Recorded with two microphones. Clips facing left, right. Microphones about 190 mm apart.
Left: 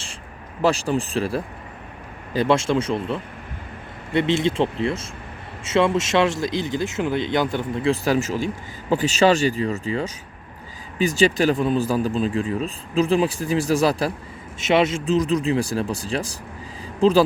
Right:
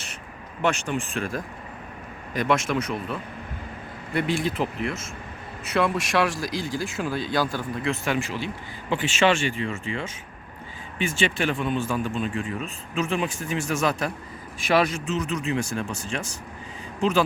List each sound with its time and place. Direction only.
0.6 s speech: 35° left (ahead or behind)
14.6 s speech: 25° left (ahead or behind)
15.0 s speech: 35° left (ahead or behind)